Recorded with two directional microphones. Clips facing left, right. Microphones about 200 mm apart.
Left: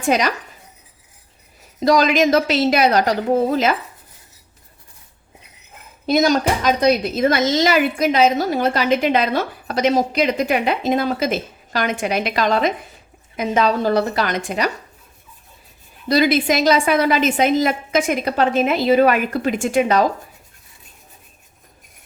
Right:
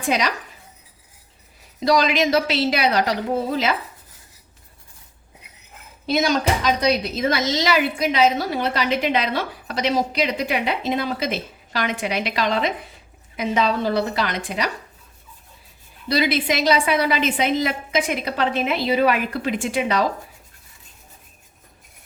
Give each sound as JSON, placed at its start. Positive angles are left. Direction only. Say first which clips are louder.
{"t": 0.1, "sound": "speech", "louder": "left 3 dB", "side_deg": 45}
{"t": 1.8, "sound": "speech", "louder": "left 4 dB", "side_deg": 45}
{"t": 6.1, "sound": "speech", "louder": "left 4 dB", "side_deg": 45}
{"t": 16.0, "sound": "speech", "louder": "left 5 dB", "side_deg": 45}